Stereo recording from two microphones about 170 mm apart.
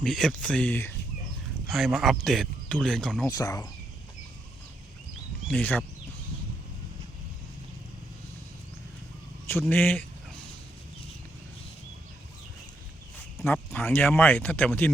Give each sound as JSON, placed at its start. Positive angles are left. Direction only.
{"t": 0.0, "sound": "speech", "side_deg": 5}
{"t": 1.6, "sound": "speech", "side_deg": 0}
{"t": 3.2, "sound": "speech", "side_deg": 20}
{"t": 5.5, "sound": "speech", "side_deg": 10}
{"t": 9.5, "sound": "speech", "side_deg": 10}
{"t": 13.4, "sound": "speech", "side_deg": 10}